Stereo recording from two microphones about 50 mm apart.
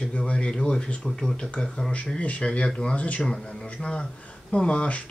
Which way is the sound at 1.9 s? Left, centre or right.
Left.